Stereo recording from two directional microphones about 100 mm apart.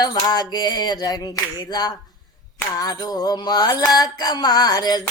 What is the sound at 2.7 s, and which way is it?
Mantra, 40° left (ahead or behind).